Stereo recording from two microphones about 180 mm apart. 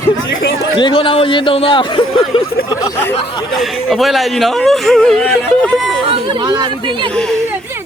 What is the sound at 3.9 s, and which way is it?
Speech, centre (ahead or behind).